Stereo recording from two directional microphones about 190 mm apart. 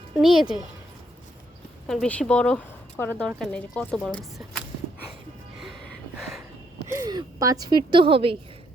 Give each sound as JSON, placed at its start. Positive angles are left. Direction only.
{"t": 0.2, "sound": "speech", "side_deg": 0}
{"t": 1.9, "sound": "speech", "side_deg": 5}
{"t": 6.1, "sound": "a sound", "side_deg": 0}
{"t": 6.8, "sound": "a woman's voice", "side_deg": -15}